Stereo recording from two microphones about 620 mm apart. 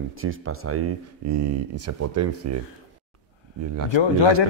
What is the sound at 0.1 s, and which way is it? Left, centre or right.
Speech, centre.